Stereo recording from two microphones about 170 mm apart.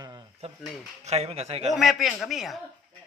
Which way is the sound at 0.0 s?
25° right (ahead or behind).